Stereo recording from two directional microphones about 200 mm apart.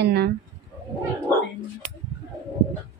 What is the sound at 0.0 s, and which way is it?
Speech, 55° right (ahead or behind).